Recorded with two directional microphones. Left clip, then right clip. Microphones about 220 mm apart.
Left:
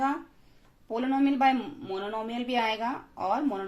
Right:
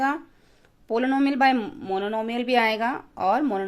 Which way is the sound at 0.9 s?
50° right (ahead or behind).